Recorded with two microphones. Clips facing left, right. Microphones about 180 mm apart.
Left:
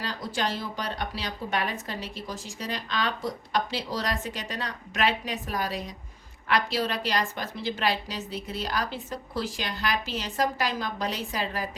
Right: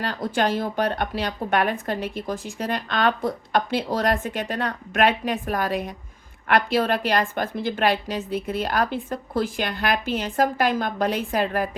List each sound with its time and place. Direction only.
0.0 s speech: 55° right (ahead or behind)